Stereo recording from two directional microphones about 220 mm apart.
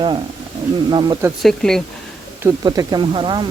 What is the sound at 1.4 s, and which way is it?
Speech, centre (ahead or behind).